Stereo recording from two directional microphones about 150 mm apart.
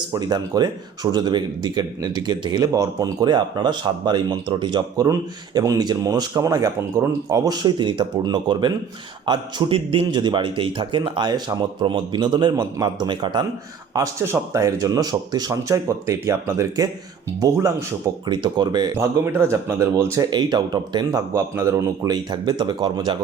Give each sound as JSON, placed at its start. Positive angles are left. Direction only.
{"t": 0.1, "sound": "a man's voice", "side_deg": -25}
{"t": 13.9, "sound": "speech", "side_deg": -20}
{"t": 18.9, "sound": "speech", "side_deg": -15}